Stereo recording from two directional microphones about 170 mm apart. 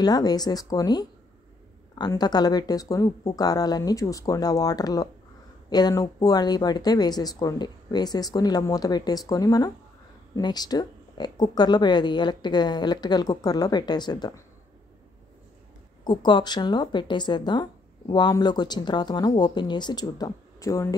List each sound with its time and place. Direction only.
0.0 s a woman's voice: 20° left (ahead or behind)
16.0 s a woman's voice: 25° left (ahead or behind)